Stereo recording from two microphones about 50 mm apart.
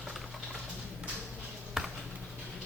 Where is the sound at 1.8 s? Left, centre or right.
Centre.